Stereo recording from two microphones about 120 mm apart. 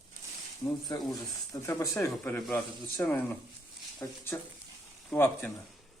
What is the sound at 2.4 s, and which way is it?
Speech, 5° left (ahead or behind).